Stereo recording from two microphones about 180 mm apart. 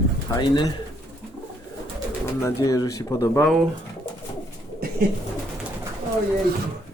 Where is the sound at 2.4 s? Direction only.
15° left (ahead or behind).